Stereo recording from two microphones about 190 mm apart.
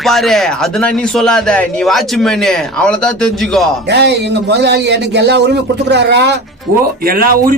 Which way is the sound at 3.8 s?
60° right (ahead or behind).